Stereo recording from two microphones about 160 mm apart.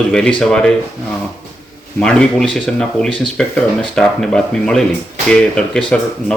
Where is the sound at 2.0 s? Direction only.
5° left (ahead or behind).